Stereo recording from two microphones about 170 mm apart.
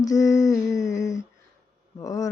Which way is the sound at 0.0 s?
20° left (ahead or behind).